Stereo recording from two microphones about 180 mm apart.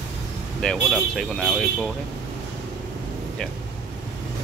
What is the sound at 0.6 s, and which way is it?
Speech, 5° left (ahead or behind).